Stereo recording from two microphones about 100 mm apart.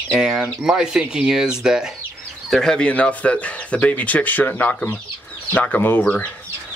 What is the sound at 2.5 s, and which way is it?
Speech, 5° left (ahead or behind).